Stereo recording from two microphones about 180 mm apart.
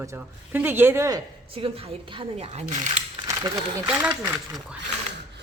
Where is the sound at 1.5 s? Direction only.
30° right (ahead or behind).